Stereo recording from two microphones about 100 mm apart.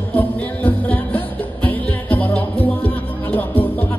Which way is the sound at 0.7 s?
15° left (ahead or behind).